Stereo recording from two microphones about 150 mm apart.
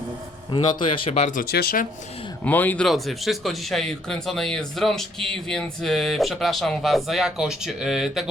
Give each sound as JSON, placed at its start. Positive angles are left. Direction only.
{"t": 0.5, "sound": "speech", "side_deg": 35}
{"t": 1.4, "sound": "speech", "side_deg": 90}
{"t": 2.4, "sound": "speech", "side_deg": 10}